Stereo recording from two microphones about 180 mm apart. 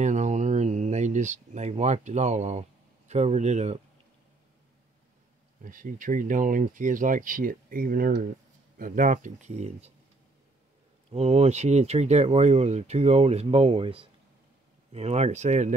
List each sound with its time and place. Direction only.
0.0 s a sound: 40° right (ahead or behind)
3.1 s speech: 40° right (ahead or behind)
5.6 s speech: 50° right (ahead or behind)
11.1 s speech: 35° right (ahead or behind)